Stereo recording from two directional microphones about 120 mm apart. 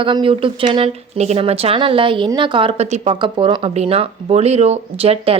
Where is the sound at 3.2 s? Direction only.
45° right (ahead or behind).